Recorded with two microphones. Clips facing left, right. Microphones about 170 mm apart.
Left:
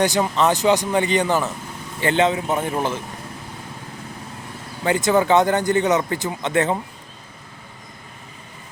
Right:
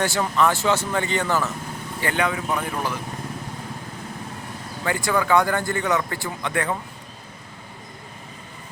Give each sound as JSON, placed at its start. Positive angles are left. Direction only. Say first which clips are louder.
{"t": 0.0, "sound": "speech", "louder": "left 3 dB", "side_deg": 20}
{"t": 4.8, "sound": "speech", "louder": "left 5 dB", "side_deg": 20}